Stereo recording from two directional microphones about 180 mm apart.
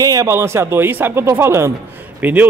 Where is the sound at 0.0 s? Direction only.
20° right (ahead or behind).